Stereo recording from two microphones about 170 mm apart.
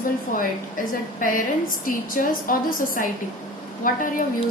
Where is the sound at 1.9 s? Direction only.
55° left (ahead or behind).